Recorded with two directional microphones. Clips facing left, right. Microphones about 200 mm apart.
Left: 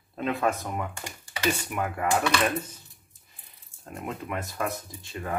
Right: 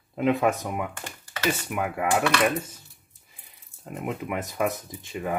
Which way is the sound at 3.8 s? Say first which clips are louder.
Right 4 dB; 15° right (ahead or behind).